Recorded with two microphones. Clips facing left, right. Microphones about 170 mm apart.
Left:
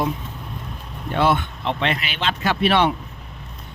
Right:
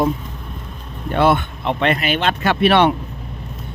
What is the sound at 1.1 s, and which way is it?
Speech, 55° right (ahead or behind).